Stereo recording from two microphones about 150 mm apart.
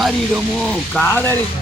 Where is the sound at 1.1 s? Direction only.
15° left (ahead or behind).